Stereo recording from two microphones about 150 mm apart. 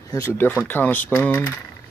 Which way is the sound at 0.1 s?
20° left (ahead or behind).